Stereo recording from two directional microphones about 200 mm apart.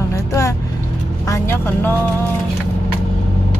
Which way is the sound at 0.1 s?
15° left (ahead or behind).